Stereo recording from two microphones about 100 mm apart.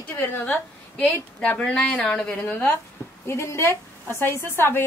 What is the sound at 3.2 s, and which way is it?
A woman's voice, 25° left (ahead or behind).